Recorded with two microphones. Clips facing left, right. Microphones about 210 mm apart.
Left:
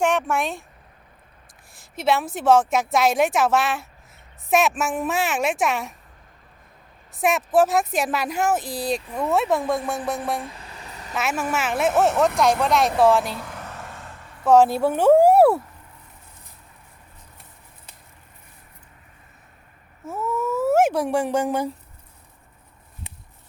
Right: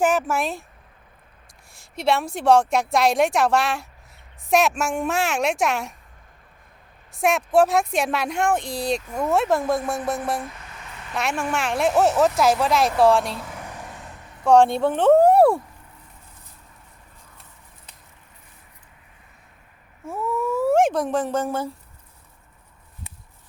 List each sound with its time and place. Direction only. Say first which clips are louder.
0.0 s speech: right 1 dB; 5° right (ahead or behind)
1.7 s speech: even; centre (ahead or behind)
7.2 s speech: right 1 dB; centre (ahead or behind)
10.4 s vehicle: even; 30° left (ahead or behind)
11.1 s speech: even; 5° left (ahead or behind)
13.6 s vehicle: even; 15° right (ahead or behind)
14.4 s speech: even; 5° left (ahead or behind)
20.1 s speech: right 1 dB; centre (ahead or behind)